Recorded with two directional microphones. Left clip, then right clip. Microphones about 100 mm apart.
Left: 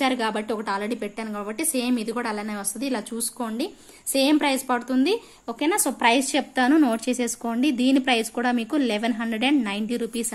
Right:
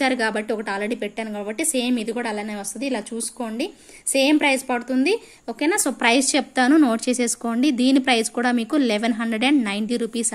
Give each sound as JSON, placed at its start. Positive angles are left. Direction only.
{"t": 0.0, "sound": "a woman's voice", "side_deg": -20}